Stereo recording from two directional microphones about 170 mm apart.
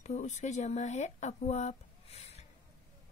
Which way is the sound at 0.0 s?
40° left (ahead or behind).